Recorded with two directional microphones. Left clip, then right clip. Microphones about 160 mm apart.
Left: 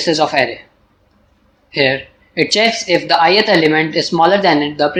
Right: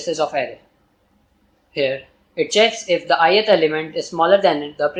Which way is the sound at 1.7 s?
30° left (ahead or behind).